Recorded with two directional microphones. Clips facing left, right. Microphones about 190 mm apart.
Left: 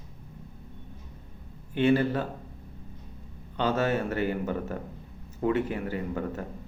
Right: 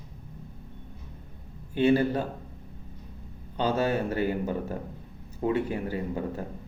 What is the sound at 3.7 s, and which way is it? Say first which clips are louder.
Speech: even; 15° right (ahead or behind).